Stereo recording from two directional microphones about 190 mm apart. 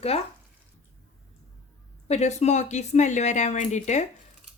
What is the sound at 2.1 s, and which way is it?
Speech, 35° left (ahead or behind).